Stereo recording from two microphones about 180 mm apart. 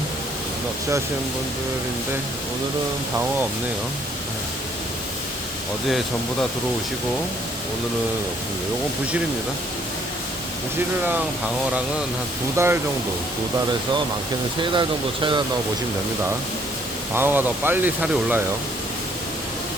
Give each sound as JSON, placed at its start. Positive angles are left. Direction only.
{"t": 12.5, "sound": "speech", "side_deg": -15}
{"t": 14.6, "sound": "speech", "side_deg": -25}
{"t": 17.2, "sound": "speech", "side_deg": -10}